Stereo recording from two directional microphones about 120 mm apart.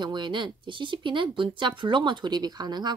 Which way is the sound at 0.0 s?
40° right (ahead or behind).